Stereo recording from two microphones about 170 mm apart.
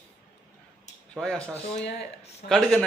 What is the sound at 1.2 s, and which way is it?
Speech, 5° left (ahead or behind).